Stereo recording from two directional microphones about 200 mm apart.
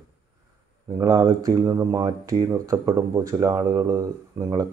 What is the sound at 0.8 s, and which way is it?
Speech, 15° right (ahead or behind).